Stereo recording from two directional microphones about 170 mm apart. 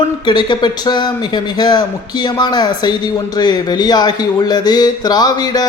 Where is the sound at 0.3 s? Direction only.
25° left (ahead or behind).